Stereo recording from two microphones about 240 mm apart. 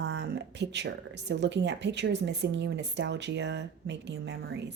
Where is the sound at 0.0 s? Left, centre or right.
Right.